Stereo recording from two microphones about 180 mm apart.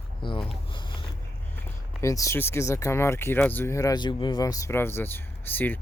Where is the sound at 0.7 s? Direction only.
25° left (ahead or behind).